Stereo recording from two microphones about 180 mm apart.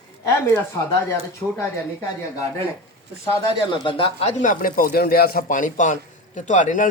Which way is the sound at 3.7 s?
30° left (ahead or behind).